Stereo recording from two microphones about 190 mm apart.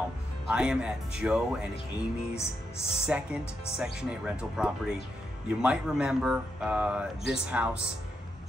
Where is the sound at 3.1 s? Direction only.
5° right (ahead or behind).